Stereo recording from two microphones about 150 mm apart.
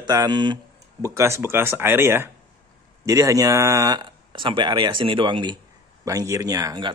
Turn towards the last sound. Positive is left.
turn(degrees=-30)  # may be behind; listen again after turning